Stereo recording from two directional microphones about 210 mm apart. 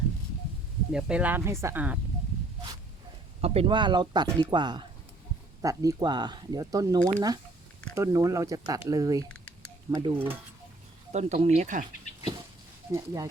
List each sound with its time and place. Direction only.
0.9 s speech: 5° right (ahead or behind)
3.4 s speech: 30° right (ahead or behind)
11.1 s speech: 30° right (ahead or behind)
12.9 s speech: 15° right (ahead or behind)